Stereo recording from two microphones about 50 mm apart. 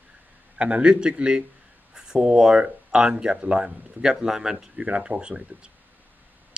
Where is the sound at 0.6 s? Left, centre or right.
Right.